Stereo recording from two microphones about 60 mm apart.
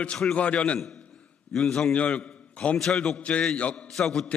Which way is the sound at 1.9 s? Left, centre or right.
Left.